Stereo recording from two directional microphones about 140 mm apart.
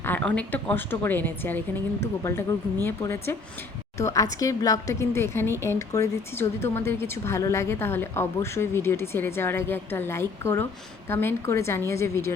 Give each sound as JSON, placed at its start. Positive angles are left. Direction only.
{"t": 0.0, "sound": "speech", "side_deg": 10}